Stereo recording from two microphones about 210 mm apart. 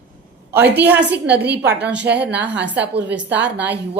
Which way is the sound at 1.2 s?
50° right (ahead or behind).